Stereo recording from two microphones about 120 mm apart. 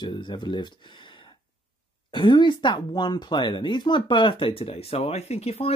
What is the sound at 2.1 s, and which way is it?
Speech, 40° left (ahead or behind).